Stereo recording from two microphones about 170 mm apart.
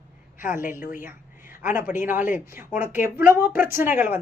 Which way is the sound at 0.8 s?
50° left (ahead or behind).